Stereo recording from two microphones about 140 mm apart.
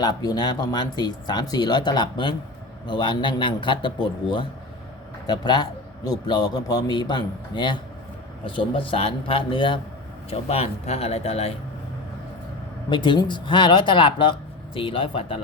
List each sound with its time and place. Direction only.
0.0 s a man's voice: 30° left (ahead or behind)
10.2 s a man's voice: 45° left (ahead or behind)
12.9 s speech: 35° left (ahead or behind)